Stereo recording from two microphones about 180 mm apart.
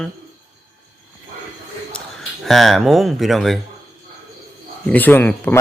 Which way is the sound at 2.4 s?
Centre (ahead or behind).